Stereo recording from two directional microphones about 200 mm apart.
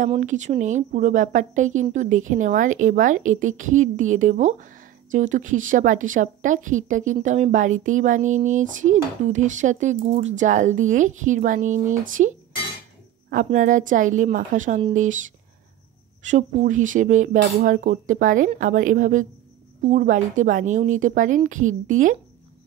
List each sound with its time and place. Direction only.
0.2 s a woman's voice: 35° right (ahead or behind)